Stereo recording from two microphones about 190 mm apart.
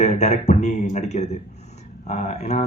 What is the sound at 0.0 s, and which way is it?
A man's voice, 35° left (ahead or behind).